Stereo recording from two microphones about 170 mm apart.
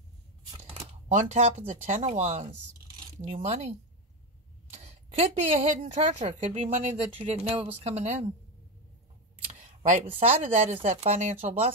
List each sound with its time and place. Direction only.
1.1 s speech: 40° right (ahead or behind)
4.7 s speech: 40° right (ahead or behind)
9.5 s speech: 35° right (ahead or behind)